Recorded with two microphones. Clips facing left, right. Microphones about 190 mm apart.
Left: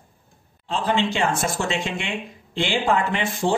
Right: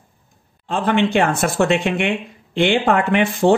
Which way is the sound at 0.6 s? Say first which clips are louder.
Right 5 dB; 60° right (ahead or behind).